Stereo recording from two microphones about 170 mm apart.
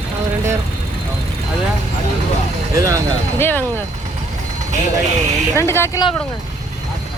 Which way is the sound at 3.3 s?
10° left (ahead or behind).